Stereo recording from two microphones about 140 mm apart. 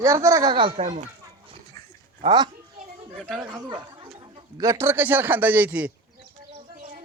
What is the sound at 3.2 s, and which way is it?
Speech, centre (ahead or behind).